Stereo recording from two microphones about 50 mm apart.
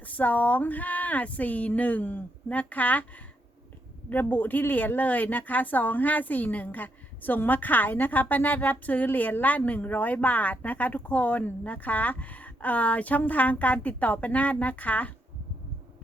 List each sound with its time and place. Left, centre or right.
0.2 s speech: left
4.1 s speech: left